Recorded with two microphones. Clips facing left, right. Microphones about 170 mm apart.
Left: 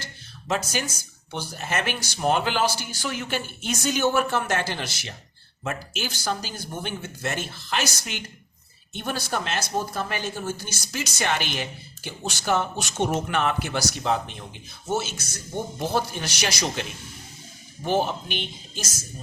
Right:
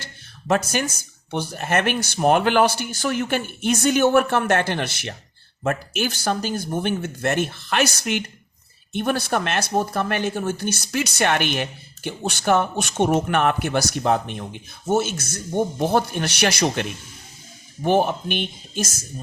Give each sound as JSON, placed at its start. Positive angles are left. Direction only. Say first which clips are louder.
{"t": 0.0, "sound": "a sound", "louder": "right 1 dB", "side_deg": -55}
{"t": 1.3, "sound": "speech", "louder": "right 7 dB", "side_deg": -55}
{"t": 17.8, "sound": "speech", "louder": "right 5 dB", "side_deg": -55}